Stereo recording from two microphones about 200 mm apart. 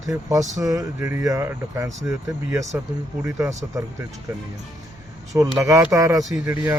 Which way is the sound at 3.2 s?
15° right (ahead or behind).